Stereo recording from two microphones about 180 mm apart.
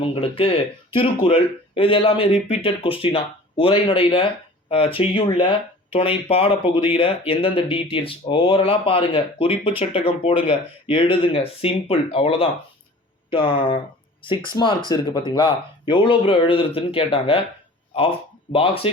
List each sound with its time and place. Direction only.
0.1 s speech: 30° left (ahead or behind)
18.5 s speech: 30° left (ahead or behind)